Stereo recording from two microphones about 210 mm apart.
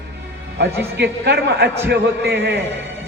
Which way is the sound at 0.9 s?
55° right (ahead or behind).